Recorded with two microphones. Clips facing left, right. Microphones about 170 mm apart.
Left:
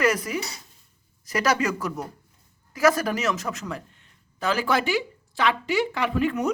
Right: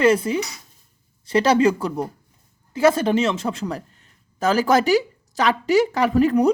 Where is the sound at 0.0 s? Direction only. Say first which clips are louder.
Right 6 dB; 30° right (ahead or behind).